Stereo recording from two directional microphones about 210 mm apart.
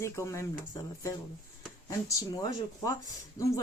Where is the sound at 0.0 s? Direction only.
15° left (ahead or behind).